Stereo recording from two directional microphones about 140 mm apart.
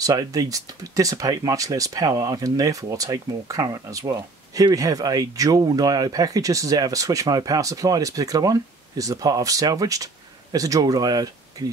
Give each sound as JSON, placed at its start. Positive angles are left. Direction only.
{"t": 0.0, "sound": "speech", "side_deg": -25}